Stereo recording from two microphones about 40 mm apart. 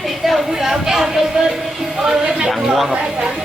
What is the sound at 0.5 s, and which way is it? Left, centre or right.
Speech, centre.